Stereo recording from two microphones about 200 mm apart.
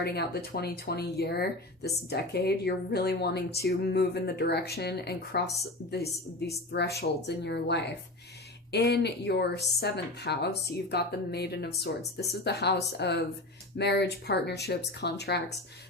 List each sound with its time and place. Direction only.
0.0 s speech: 55° left (ahead or behind)